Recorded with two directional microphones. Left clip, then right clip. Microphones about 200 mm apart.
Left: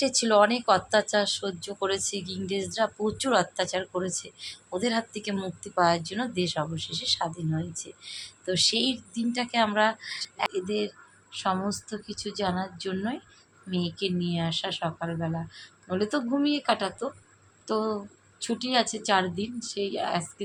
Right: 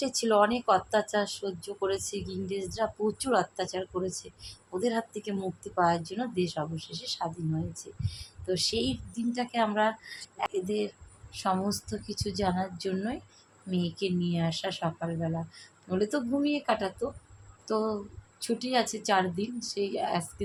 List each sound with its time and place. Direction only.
0.0 s speech: 10° left (ahead or behind)